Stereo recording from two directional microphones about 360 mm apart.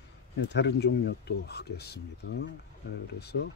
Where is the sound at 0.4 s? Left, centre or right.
Left.